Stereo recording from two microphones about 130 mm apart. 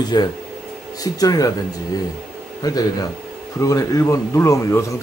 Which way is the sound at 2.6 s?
30° left (ahead or behind).